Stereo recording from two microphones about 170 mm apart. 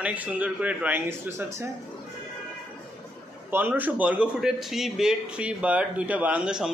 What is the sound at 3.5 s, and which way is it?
A man's voice, 10° right (ahead or behind).